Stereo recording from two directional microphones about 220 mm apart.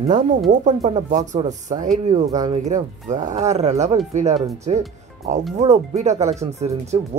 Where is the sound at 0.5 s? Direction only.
35° right (ahead or behind).